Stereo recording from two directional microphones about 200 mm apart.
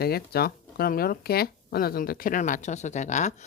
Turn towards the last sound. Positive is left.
turn(degrees=35)  # may be behind; listen again after turning